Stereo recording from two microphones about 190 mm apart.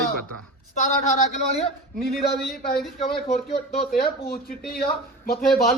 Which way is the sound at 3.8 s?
50° left (ahead or behind).